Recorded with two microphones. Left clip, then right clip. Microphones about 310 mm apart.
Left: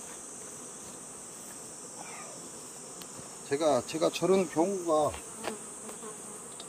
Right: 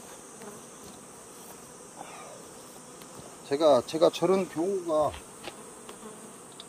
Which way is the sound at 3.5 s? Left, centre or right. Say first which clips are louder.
Right 5 dB; right.